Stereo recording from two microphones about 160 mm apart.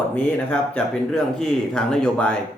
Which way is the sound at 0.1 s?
5° left (ahead or behind).